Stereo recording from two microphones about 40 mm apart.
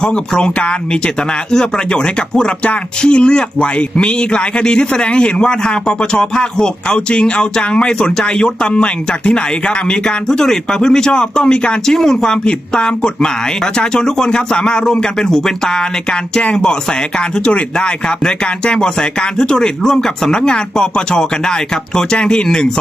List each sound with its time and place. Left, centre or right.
0.0 s a man's voice: left
11.9 s a man's voice: centre
17.2 s a man's voice: left